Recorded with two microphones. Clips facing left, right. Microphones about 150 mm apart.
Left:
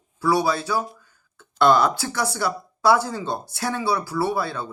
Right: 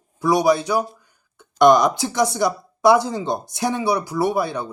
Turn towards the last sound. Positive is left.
turn(degrees=-15)  # may be behind; listen again after turning